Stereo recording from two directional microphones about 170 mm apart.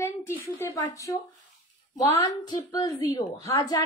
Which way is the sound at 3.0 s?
20° left (ahead or behind).